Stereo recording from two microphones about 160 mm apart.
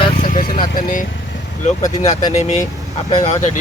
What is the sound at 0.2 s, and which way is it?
Vehicle, 55° left (ahead or behind).